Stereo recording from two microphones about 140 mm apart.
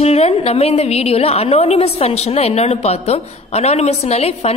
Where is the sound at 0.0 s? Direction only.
50° left (ahead or behind).